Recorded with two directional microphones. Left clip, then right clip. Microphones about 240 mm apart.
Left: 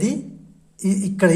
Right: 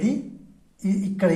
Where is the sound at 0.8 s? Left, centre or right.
Left.